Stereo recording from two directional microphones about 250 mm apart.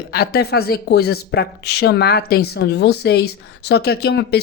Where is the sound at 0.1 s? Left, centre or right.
Left.